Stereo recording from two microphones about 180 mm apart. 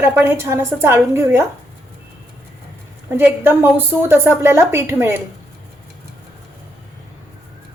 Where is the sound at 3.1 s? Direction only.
10° right (ahead or behind).